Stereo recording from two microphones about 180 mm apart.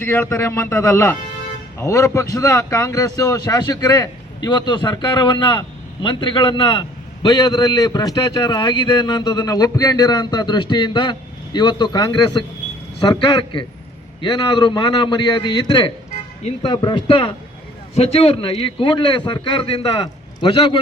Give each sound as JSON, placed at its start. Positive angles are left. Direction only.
{"t": 0.0, "sound": "a man's voice", "side_deg": 10}